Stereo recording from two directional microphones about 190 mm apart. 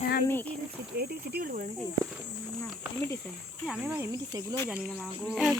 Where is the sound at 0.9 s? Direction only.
55° right (ahead or behind).